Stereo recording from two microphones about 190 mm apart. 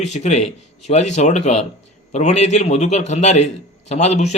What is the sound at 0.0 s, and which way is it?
A man's voice, 35° left (ahead or behind).